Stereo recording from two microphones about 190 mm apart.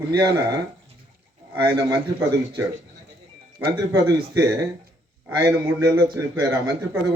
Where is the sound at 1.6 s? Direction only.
20° right (ahead or behind).